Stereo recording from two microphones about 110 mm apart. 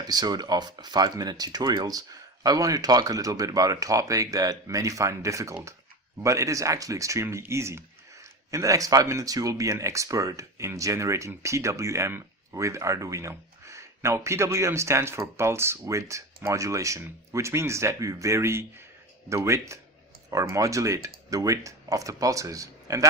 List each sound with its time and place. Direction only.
0.0 s speech: 35° right (ahead or behind)